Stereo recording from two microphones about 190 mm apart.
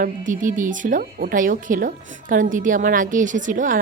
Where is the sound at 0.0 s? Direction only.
45° right (ahead or behind).